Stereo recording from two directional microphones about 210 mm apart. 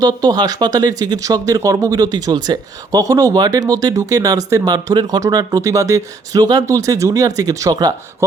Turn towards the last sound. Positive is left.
turn(degrees=-20)  # may be behind; listen again after turning